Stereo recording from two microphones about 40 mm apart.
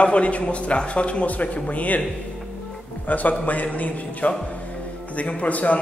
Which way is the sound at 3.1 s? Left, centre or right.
Left.